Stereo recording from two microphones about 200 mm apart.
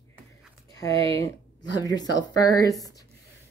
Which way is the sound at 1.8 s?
20° left (ahead or behind).